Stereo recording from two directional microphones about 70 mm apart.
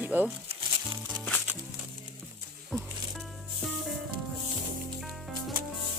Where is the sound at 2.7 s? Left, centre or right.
Centre.